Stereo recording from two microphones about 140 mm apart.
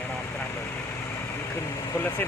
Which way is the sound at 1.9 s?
15° left (ahead or behind).